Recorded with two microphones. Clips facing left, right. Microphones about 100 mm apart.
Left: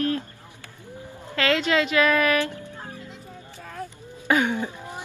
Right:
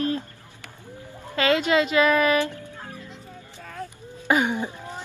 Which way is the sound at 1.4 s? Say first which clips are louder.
Right 1 dB; 15° right (ahead or behind).